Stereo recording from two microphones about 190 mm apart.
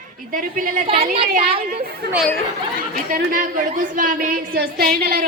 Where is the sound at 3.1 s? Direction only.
45° right (ahead or behind).